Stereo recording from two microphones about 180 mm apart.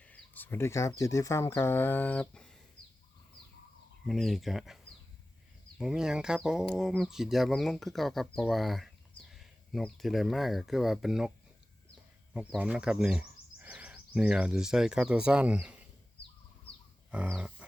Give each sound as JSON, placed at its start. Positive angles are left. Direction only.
{"t": 0.0, "sound": "speech", "side_deg": 10}
{"t": 4.0, "sound": "speech", "side_deg": 0}
{"t": 12.3, "sound": "speech", "side_deg": -5}
{"t": 17.1, "sound": "a sound", "side_deg": -5}